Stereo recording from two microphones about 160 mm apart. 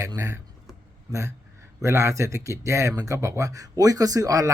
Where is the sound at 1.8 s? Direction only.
15° right (ahead or behind).